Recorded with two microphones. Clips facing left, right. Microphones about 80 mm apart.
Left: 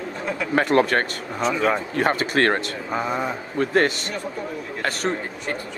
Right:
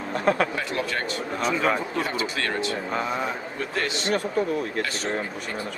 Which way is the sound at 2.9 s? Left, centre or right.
Centre.